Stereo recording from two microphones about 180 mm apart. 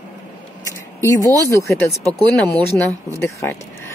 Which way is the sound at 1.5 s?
15° left (ahead or behind).